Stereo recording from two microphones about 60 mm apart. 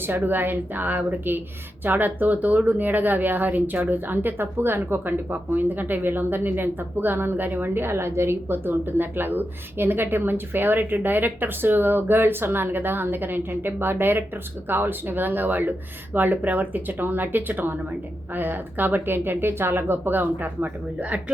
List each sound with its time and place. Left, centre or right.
0.0 s speech: right